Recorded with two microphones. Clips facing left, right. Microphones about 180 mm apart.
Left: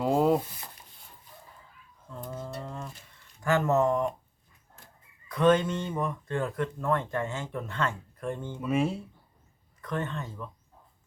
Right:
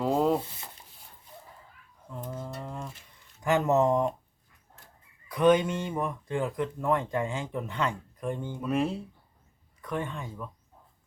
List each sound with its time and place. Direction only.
0.0 s a sound: 5° left (ahead or behind)
2.2 s cattle: centre (ahead or behind)
2.6 s a sound: 10° right (ahead or behind)
3.4 s speech: 15° right (ahead or behind)
5.3 s speech: 10° right (ahead or behind)
8.6 s speech: centre (ahead or behind)